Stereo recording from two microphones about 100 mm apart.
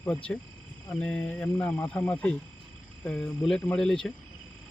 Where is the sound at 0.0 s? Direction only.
15° left (ahead or behind).